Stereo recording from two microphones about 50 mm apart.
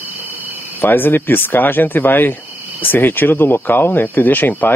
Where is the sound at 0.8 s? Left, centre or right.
Left.